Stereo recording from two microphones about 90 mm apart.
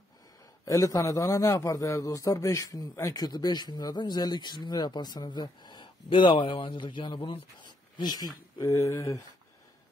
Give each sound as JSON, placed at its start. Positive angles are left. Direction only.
{"t": 0.7, "sound": "a man's voice", "side_deg": 35}
{"t": 8.5, "sound": "a man's voice", "side_deg": 35}